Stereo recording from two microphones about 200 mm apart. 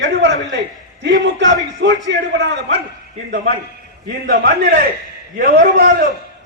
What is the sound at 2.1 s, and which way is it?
Speech, 65° right (ahead or behind).